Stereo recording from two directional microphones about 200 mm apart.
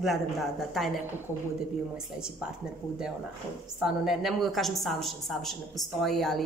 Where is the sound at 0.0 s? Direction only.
Centre (ahead or behind).